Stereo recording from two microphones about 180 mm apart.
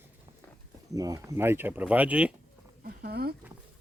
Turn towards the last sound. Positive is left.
turn(degrees=-60)  # may be behind; listen again after turning